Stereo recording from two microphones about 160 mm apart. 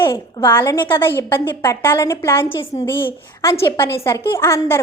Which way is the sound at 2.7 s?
30° left (ahead or behind).